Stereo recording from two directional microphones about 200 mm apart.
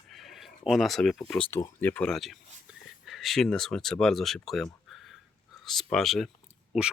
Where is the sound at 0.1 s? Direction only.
Centre (ahead or behind).